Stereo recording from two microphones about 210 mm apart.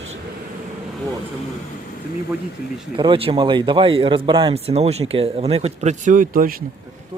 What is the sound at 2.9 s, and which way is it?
Speech, 25° right (ahead or behind).